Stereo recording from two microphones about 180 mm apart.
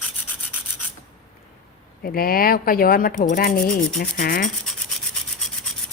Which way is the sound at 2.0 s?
55° left (ahead or behind).